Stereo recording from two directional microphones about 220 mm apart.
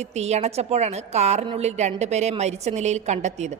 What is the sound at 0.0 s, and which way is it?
A woman's voice, 30° right (ahead or behind).